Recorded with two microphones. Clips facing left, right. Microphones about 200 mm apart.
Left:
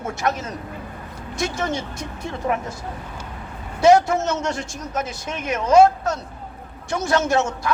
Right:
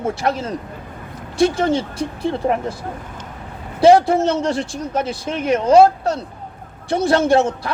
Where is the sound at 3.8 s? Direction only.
30° right (ahead or behind).